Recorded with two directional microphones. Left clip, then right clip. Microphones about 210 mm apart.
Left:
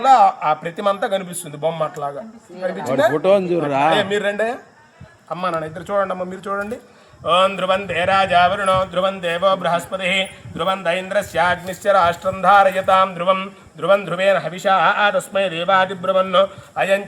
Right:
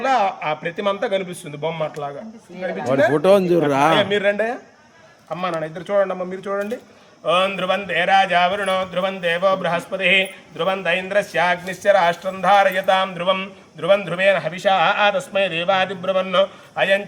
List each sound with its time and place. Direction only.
0.1 s speech: centre (ahead or behind)
3.2 s a man's voice: 30° right (ahead or behind)
4.1 s speech: centre (ahead or behind)